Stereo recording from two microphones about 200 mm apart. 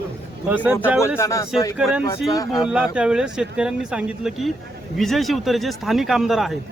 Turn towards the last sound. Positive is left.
turn(degrees=0)  # may be behind; listen again after turning